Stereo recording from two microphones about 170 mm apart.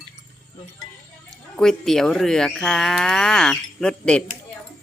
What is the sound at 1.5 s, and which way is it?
Speech, 5° left (ahead or behind).